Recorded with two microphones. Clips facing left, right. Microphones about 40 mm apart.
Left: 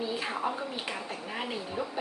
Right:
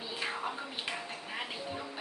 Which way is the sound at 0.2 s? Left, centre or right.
Centre.